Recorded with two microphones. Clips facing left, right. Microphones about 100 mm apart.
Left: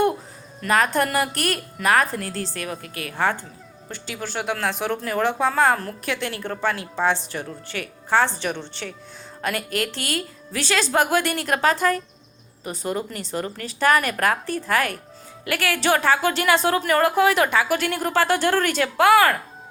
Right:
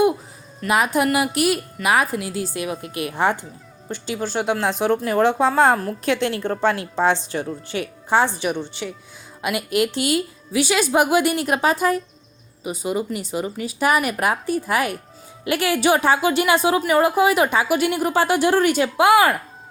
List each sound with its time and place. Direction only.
0.7 s a woman's voice: 10° right (ahead or behind)